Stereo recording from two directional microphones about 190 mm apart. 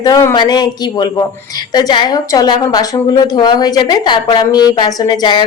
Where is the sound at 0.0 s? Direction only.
15° left (ahead or behind).